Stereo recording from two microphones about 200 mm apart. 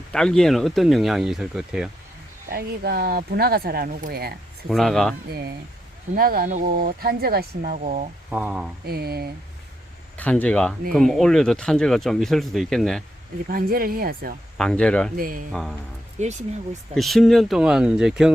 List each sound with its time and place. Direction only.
0.1 s speech: 5° left (ahead or behind)
2.5 s speech: 50° right (ahead or behind)
4.7 s speech: centre (ahead or behind)
6.1 s speech: 45° right (ahead or behind)
8.3 s speech: 5° right (ahead or behind)
8.9 s speech: 50° right (ahead or behind)
10.2 s speech: 10° left (ahead or behind)
13.5 s speech: 45° right (ahead or behind)
14.6 s speech: 5° left (ahead or behind)
15.1 s speech: 45° right (ahead or behind)
16.9 s speech: centre (ahead or behind)